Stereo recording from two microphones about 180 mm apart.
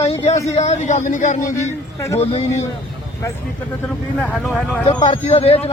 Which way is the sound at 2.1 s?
35° left (ahead or behind).